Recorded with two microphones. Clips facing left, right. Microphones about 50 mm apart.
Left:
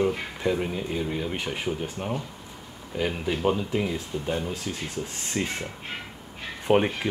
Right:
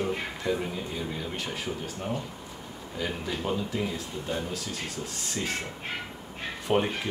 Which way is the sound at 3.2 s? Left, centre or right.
Left.